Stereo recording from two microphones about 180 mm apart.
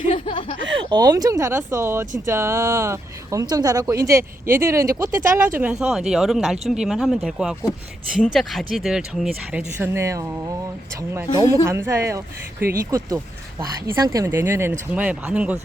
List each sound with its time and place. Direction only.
0.1 s speech: 30° left (ahead or behind)
0.7 s speech: 25° right (ahead or behind)
5.8 s speech: 5° right (ahead or behind)